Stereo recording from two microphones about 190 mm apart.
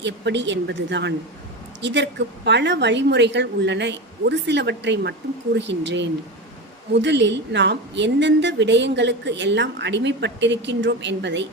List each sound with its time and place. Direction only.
0.0 s a woman's voice: 70° right (ahead or behind)